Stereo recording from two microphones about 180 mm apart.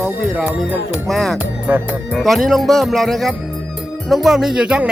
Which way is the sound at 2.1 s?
Centre (ahead or behind).